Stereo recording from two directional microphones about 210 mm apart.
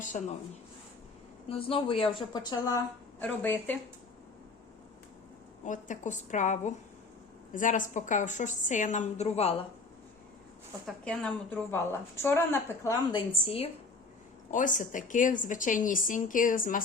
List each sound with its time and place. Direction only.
0.0 s speech: 35° left (ahead or behind)
1.5 s a woman's voice: 25° left (ahead or behind); by 3.8 s 10° left (ahead or behind)
5.6 s speech: 35° left (ahead or behind)
10.8 s a woman's voice: 5° left (ahead or behind)
13.4 s a woman's voice: 25° left (ahead or behind)
14.5 s speech: 40° left (ahead or behind)